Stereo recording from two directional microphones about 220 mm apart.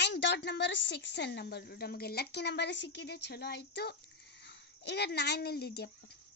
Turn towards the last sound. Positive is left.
turn(degrees=45)  # may be behind; listen again after turning